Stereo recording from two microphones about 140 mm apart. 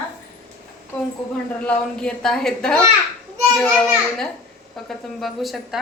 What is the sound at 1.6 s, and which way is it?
A woman's voice, 5° left (ahead or behind).